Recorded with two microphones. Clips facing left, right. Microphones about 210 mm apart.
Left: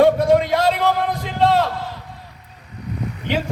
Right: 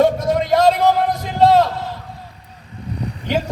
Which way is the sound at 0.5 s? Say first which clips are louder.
Right 4 dB; 45° right (ahead or behind).